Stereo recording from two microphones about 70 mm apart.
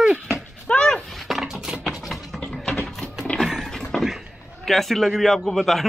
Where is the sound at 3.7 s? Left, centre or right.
Centre.